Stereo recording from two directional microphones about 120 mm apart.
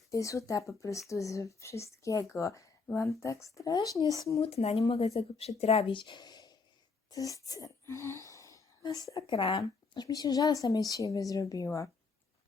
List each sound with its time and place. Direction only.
0.1 s speech: 25° left (ahead or behind)
4.4 s speech: 60° left (ahead or behind); by 9.2 s 30° left (ahead or behind)
9.3 s speech: 45° left (ahead or behind); by 11.9 s 25° left (ahead or behind)